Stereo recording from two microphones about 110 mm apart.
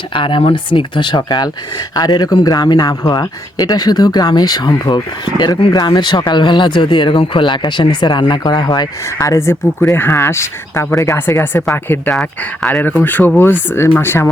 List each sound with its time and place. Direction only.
0.1 s a man's voice: 50° left (ahead or behind)
9.2 s speech: 25° left (ahead or behind)
12.0 s speech: 10° left (ahead or behind)